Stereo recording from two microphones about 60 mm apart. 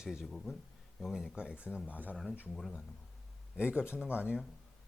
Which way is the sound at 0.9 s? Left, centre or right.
Centre.